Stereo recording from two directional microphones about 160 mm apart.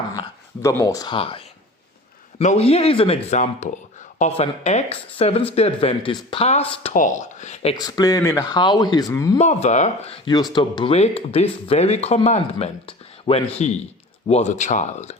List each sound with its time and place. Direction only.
0.1 s speech: 20° left (ahead or behind)
1.1 s speech: 35° left (ahead or behind)
6.9 s speech: 50° left (ahead or behind)
7.8 s speech: 25° left (ahead or behind)
9.4 s speech: 45° left (ahead or behind)
10.2 s speech: 25° left (ahead or behind); by 15.1 s 50° left (ahead or behind)